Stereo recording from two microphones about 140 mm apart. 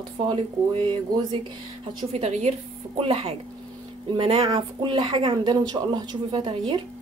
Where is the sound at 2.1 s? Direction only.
50° right (ahead or behind).